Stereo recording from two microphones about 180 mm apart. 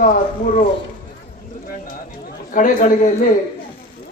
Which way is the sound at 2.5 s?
45° left (ahead or behind).